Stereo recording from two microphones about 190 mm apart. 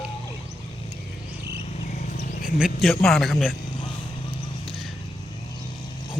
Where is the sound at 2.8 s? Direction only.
Centre (ahead or behind).